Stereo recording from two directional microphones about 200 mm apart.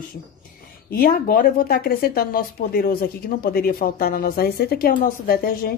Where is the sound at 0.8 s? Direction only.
45° left (ahead or behind).